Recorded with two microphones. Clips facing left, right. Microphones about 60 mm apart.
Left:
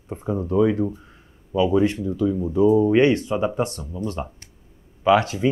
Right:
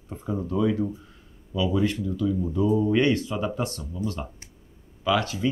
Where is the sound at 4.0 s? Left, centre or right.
Left.